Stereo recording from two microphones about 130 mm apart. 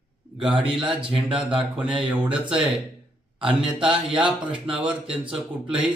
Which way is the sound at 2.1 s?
10° right (ahead or behind).